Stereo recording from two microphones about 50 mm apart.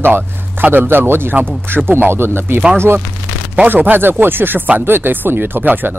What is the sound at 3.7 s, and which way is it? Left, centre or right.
Speech, right.